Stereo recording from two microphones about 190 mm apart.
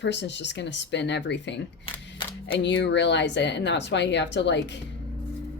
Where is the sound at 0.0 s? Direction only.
65° left (ahead or behind).